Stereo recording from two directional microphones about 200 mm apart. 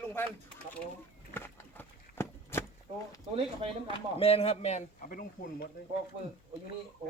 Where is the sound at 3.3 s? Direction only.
30° right (ahead or behind).